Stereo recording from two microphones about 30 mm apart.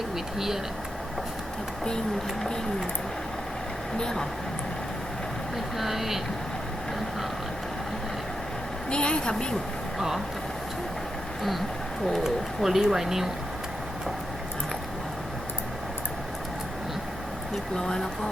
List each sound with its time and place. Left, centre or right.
0.3 s speech: centre
3.9 s speech: left
5.8 s speech: centre
8.9 s a woman's voice: left
12.2 s speech: centre
17.7 s speech: left